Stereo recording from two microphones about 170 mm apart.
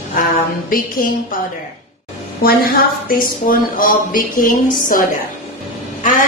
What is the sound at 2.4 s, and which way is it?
Speech, 60° left (ahead or behind).